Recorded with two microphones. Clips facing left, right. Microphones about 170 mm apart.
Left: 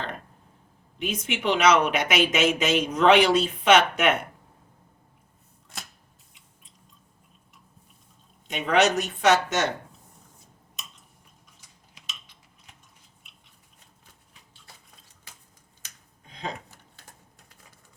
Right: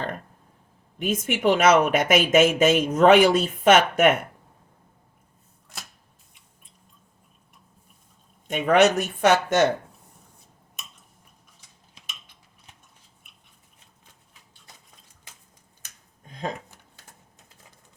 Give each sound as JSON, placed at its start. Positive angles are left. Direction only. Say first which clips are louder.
{"t": 0.9, "sound": "speech", "louder": "right 4 dB", "side_deg": -50}
{"t": 8.4, "sound": "speech", "louder": "right 4 dB", "side_deg": -50}
{"t": 15.8, "sound": "a sound", "louder": "right 2 dB", "side_deg": -50}